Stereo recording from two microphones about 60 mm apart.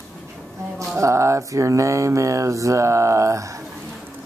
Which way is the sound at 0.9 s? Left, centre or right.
Right.